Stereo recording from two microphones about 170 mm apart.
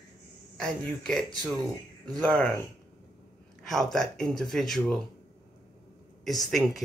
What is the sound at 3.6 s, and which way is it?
Speech, centre (ahead or behind).